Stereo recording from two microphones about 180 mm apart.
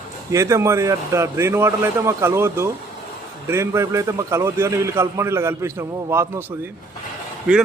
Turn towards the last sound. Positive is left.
turn(degrees=-5)  # may be behind; listen again after turning